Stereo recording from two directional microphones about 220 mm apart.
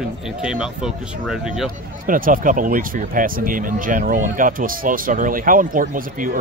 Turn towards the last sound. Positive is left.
turn(degrees=-35)  # may be behind; listen again after turning